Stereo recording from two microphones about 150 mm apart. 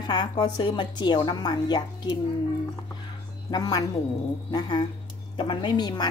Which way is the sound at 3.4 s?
25° left (ahead or behind).